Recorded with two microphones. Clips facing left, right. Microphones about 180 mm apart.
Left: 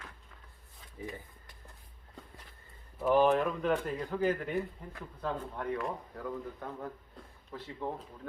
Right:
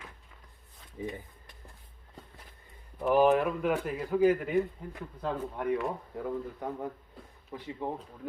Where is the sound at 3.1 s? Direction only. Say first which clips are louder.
Right 2 dB; 10° right (ahead or behind).